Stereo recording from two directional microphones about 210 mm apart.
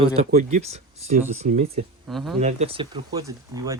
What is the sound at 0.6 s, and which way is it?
Speech, 30° right (ahead or behind).